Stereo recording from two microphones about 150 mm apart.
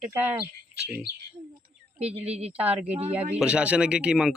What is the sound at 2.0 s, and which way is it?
Speech, 45° right (ahead or behind).